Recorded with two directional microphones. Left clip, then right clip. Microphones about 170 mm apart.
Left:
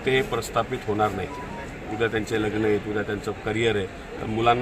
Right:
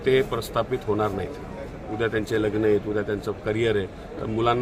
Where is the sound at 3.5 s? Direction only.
30° right (ahead or behind).